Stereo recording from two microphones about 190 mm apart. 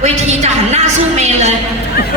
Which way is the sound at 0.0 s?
35° right (ahead or behind).